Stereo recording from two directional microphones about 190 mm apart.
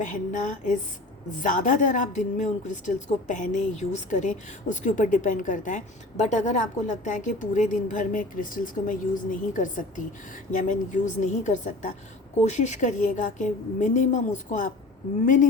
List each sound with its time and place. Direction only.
0.0 s a woman's voice: 40° left (ahead or behind)